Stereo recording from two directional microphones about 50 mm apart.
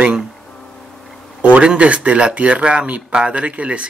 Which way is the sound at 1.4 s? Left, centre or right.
Right.